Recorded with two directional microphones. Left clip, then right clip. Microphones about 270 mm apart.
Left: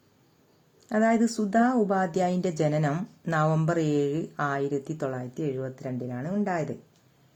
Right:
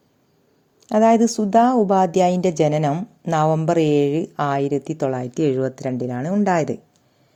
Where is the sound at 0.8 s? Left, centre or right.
Centre.